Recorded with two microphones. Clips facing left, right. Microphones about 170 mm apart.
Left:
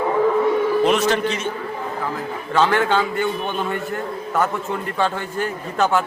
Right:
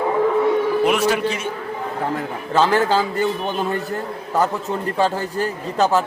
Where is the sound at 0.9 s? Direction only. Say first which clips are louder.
Even; 10° right (ahead or behind).